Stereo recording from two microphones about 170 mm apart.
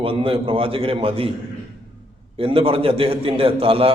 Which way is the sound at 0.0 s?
35° right (ahead or behind).